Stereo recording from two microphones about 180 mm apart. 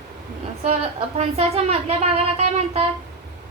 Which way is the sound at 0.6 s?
35° right (ahead or behind).